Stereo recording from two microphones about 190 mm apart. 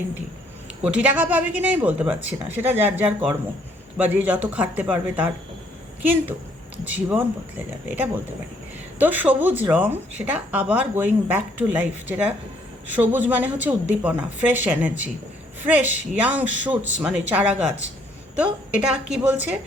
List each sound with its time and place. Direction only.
0.9 s speech: 5° right (ahead or behind)
18.9 s a woman's voice: 5° right (ahead or behind)